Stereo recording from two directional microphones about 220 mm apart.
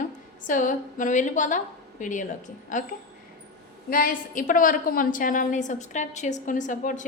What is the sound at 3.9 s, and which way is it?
A woman's voice, 40° left (ahead or behind).